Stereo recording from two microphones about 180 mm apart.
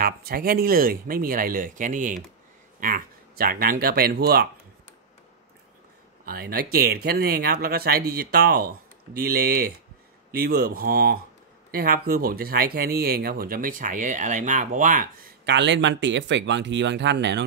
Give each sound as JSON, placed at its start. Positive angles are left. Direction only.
{"t": 0.0, "sound": "speech", "side_deg": -55}
{"t": 6.2, "sound": "speech", "side_deg": -55}
{"t": 15.4, "sound": "speech", "side_deg": -75}